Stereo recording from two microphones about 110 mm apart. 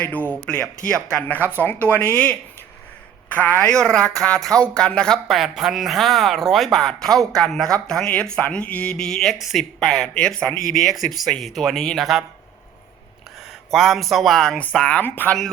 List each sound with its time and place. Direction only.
0.0 s a woman's voice: 15° left (ahead or behind); by 12.2 s centre (ahead or behind)
13.5 s a woman's voice: centre (ahead or behind); by 15.4 s 15° left (ahead or behind)